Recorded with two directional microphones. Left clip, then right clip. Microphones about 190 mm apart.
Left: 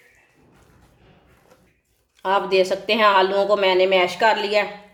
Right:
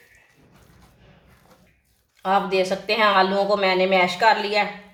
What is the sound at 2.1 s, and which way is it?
Speech, 40° left (ahead or behind).